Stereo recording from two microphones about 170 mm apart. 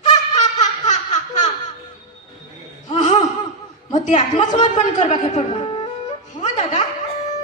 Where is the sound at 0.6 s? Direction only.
45° left (ahead or behind).